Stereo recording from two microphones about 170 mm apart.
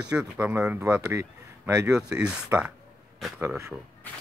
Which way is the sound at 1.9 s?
5° right (ahead or behind).